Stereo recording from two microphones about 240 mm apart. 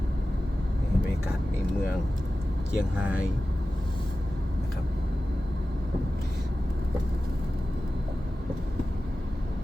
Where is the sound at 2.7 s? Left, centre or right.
Centre.